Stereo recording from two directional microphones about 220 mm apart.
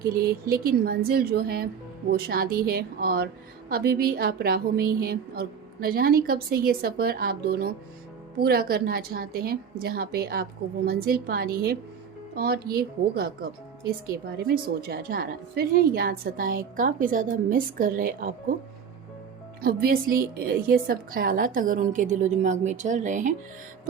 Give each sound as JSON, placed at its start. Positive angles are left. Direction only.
{"t": 0.1, "sound": "a woman's voice", "side_deg": -40}
{"t": 19.6, "sound": "a woman's voice", "side_deg": -40}